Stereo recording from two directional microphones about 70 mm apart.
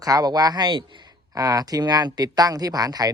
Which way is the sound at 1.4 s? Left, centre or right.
Right.